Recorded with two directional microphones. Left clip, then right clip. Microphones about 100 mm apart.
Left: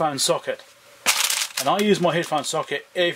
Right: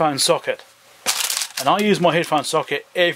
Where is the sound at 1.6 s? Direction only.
35° right (ahead or behind).